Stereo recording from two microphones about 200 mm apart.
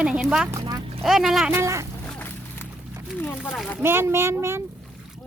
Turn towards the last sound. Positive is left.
turn(degrees=-10)  # may be behind; listen again after turning